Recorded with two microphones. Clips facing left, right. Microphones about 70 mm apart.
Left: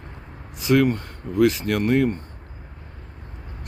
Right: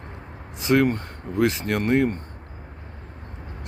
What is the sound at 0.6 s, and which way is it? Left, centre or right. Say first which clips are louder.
Speech: left 1 dB; right.